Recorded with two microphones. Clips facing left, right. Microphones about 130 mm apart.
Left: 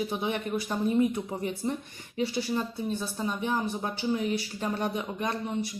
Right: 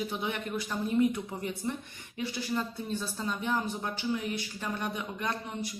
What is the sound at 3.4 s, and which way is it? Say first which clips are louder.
Speech: left 2 dB; 25° left (ahead or behind).